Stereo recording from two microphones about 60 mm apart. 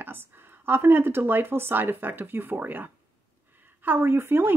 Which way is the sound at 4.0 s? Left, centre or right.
Right.